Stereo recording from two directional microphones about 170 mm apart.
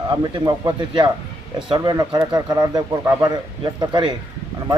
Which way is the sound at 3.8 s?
25° right (ahead or behind).